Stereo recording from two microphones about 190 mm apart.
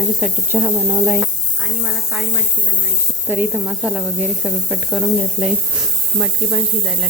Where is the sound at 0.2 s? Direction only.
10° right (ahead or behind).